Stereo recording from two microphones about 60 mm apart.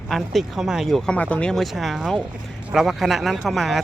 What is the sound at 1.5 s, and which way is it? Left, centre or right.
Speech, centre.